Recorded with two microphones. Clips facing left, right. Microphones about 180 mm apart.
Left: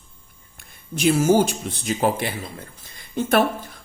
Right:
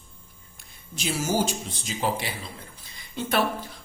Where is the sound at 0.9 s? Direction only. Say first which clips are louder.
Left 9 dB; 55° left (ahead or behind).